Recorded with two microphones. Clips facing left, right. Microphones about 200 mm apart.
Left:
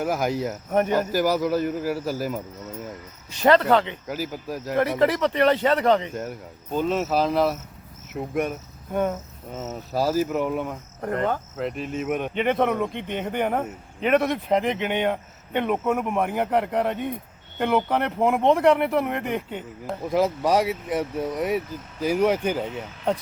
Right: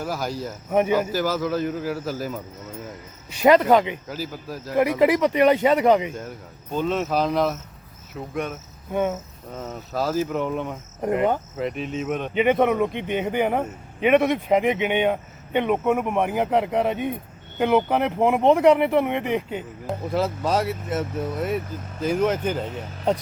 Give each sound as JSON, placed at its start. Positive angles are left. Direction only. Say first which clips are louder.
{"t": 0.0, "sound": "speech", "louder": "left 4 dB", "side_deg": 20}
{"t": 0.7, "sound": "speech", "louder": "right 2 dB", "side_deg": -5}
{"t": 1.1, "sound": "speech", "louder": "left 2 dB", "side_deg": 15}
{"t": 3.4, "sound": "speech", "louder": "right 2 dB", "side_deg": -10}
{"t": 4.1, "sound": "speech", "louder": "left 2 dB", "side_deg": 15}
{"t": 4.8, "sound": "speech", "louder": "right 3 dB", "side_deg": -10}
{"t": 6.7, "sound": "speech", "louder": "even", "side_deg": 5}
{"t": 8.9, "sound": "speech", "louder": "right 1 dB", "side_deg": 0}
{"t": 11.0, "sound": "speech", "louder": "right 4 dB", "side_deg": -10}
{"t": 12.3, "sound": "speech", "louder": "right 5 dB", "side_deg": -5}
{"t": 20.1, "sound": "speech", "louder": "left 3 dB", "side_deg": 15}